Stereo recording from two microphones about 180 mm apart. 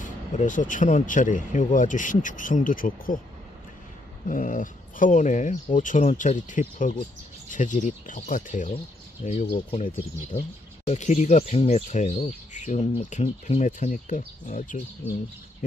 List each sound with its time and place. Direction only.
0.0 s speech: 45° left (ahead or behind)
4.3 s speech: 45° left (ahead or behind)
10.9 s speech: 40° left (ahead or behind)